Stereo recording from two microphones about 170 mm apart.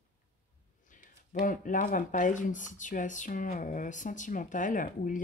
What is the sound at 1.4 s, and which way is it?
Speech, 50° left (ahead or behind).